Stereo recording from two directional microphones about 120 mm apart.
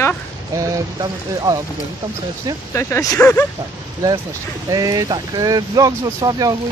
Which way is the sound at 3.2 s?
10° left (ahead or behind).